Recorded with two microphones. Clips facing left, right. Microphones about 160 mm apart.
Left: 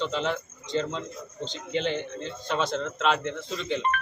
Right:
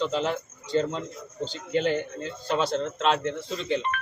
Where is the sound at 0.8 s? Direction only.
40° right (ahead or behind).